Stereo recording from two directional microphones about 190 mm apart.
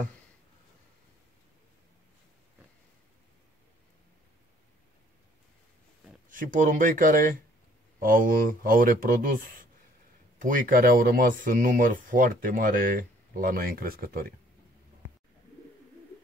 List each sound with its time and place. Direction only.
6.2 s speech: 45° right (ahead or behind)
10.4 s speech: 50° right (ahead or behind)